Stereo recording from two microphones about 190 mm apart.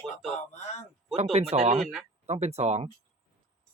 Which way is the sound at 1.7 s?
Centre (ahead or behind).